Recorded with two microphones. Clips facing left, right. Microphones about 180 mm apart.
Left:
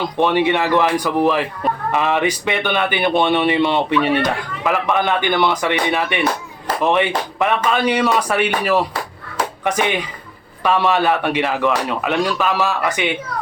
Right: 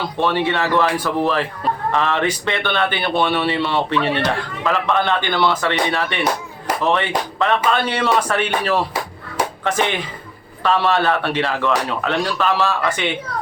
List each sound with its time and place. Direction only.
0.0 s speech: 15° left (ahead or behind)
10.6 s speech: 15° left (ahead or behind)